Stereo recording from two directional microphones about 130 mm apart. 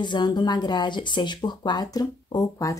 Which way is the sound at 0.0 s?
35° left (ahead or behind).